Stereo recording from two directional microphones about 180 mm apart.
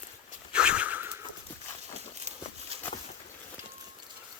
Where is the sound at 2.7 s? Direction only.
35° right (ahead or behind).